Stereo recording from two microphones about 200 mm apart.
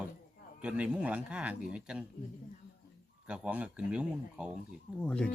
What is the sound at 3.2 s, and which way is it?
A man's voice, 5° right (ahead or behind).